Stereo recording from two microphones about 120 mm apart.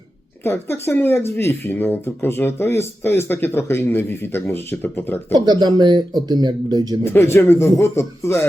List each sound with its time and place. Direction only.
0.4 s speech: 20° left (ahead or behind)
5.3 s speech: 35° right (ahead or behind)
7.0 s speech: 20° left (ahead or behind)